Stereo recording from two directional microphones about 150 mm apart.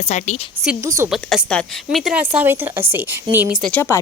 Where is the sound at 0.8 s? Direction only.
20° right (ahead or behind).